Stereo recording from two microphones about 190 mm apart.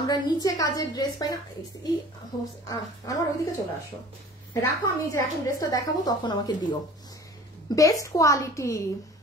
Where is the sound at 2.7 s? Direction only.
20° left (ahead or behind).